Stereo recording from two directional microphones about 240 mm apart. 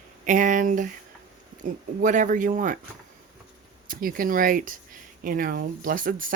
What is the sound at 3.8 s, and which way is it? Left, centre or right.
Speech, right.